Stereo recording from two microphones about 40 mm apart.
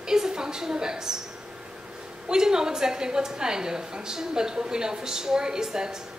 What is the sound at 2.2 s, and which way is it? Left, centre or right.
A woman's voice, centre.